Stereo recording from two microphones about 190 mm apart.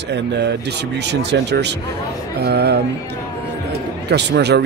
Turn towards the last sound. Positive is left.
turn(degrees=-60)  # may be behind; listen again after turning